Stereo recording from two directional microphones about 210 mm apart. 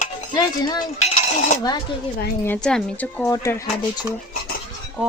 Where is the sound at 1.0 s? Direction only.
35° left (ahead or behind).